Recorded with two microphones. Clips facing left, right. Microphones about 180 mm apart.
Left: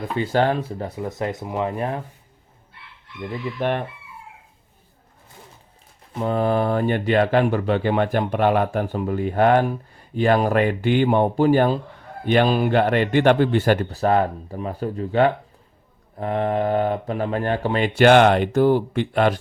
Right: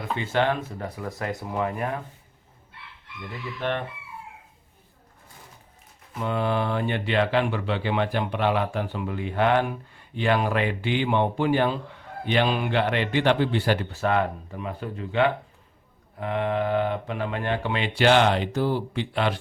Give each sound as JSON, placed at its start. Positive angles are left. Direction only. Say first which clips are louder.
{"t": 0.2, "sound": "speech", "louder": "left 5 dB", "side_deg": 35}
{"t": 3.6, "sound": "speech", "louder": "left 4 dB", "side_deg": 40}
{"t": 6.1, "sound": "speech", "louder": "left 5 dB", "side_deg": 40}